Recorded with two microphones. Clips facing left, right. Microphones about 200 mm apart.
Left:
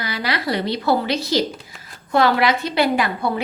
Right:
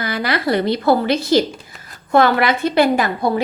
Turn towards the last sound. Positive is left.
turn(degrees=-40)  # may be behind; listen again after turning